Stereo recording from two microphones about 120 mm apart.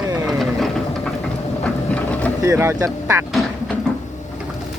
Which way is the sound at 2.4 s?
25° right (ahead or behind).